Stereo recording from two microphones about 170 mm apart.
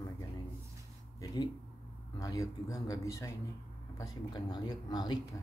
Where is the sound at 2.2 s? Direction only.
20° left (ahead or behind).